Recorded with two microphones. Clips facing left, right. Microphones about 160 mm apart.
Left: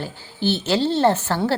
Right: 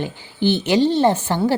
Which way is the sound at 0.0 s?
15° right (ahead or behind).